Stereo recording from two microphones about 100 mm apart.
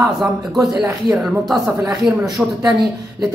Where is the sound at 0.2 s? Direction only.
Centre (ahead or behind).